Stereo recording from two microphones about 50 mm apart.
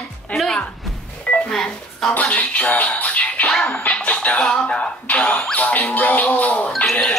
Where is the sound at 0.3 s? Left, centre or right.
Left.